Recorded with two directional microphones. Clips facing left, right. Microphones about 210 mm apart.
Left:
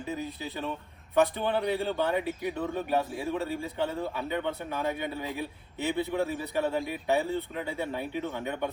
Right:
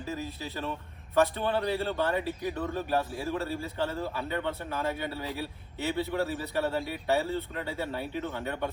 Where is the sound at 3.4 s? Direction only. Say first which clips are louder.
Left 1 dB; 15° left (ahead or behind).